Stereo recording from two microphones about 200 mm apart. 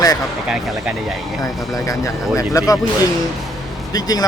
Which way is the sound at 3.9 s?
20° left (ahead or behind).